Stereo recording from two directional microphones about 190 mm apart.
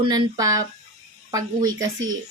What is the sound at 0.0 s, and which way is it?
Speech, 20° right (ahead or behind).